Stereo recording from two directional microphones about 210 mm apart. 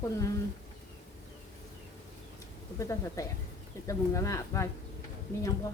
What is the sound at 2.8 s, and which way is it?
A woman's voice, 15° left (ahead or behind).